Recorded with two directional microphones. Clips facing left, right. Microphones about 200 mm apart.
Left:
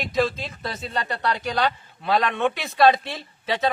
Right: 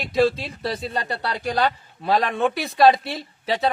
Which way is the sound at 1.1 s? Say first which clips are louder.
Even; 35° right (ahead or behind).